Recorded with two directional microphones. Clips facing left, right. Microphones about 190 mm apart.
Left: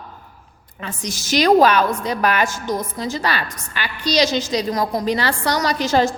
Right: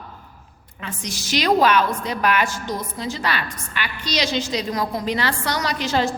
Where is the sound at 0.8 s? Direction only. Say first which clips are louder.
Left 3 dB; 45° left (ahead or behind).